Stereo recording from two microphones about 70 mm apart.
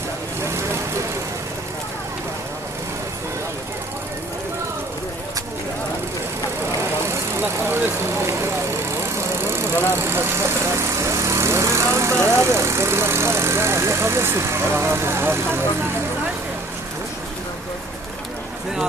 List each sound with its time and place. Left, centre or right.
0.4 s vehicle: right
7.1 s vehicle: right